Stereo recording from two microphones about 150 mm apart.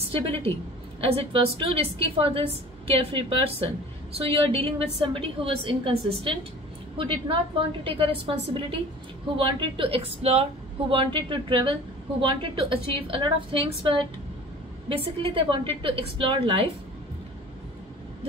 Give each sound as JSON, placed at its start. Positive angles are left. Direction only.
{"t": 0.1, "sound": "a woman's voice", "side_deg": -40}
{"t": 14.9, "sound": "a woman's voice", "side_deg": -35}